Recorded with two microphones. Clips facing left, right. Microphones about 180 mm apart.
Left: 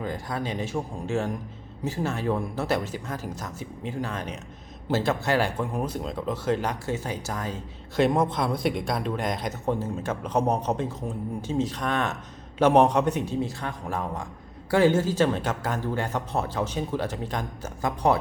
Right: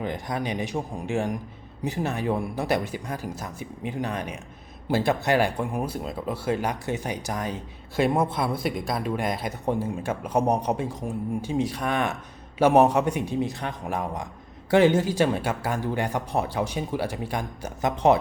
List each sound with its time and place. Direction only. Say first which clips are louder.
0.0 s speech: right 2 dB; 20° right (ahead or behind)